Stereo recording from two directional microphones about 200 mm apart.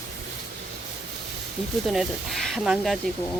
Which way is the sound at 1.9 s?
Centre (ahead or behind).